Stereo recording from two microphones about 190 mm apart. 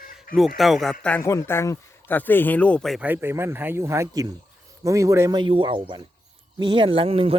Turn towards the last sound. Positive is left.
turn(degrees=-30)  # may be behind; listen again after turning